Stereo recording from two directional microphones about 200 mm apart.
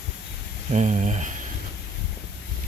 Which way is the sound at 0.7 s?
35° right (ahead or behind).